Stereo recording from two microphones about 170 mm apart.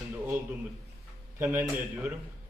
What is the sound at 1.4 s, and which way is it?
Speech, 10° right (ahead or behind).